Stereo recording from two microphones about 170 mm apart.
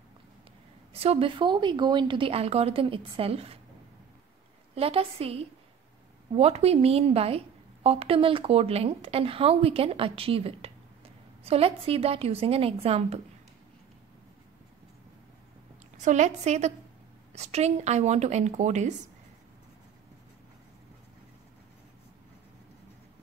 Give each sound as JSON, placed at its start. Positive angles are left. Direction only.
{"t": 0.9, "sound": "a woman's voice", "side_deg": -35}
{"t": 4.7, "sound": "a woman's voice", "side_deg": -35}
{"t": 16.0, "sound": "a woman's voice", "side_deg": -45}